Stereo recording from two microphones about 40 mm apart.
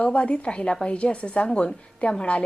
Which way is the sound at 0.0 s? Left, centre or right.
Left.